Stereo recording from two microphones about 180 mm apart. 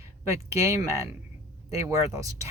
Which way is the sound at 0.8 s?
15° right (ahead or behind).